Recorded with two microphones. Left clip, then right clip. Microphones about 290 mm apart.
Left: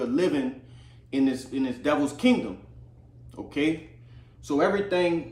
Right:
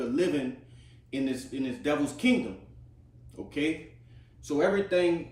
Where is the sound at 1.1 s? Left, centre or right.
Centre.